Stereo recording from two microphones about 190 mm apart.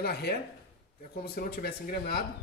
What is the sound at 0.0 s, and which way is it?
Speech, 55° left (ahead or behind).